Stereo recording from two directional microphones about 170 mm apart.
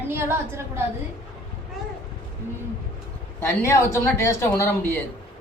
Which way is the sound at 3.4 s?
15° left (ahead or behind).